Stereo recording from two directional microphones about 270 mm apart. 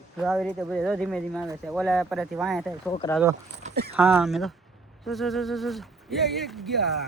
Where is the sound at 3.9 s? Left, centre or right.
Centre.